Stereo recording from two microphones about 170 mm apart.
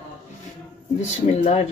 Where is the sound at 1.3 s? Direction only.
40° left (ahead or behind).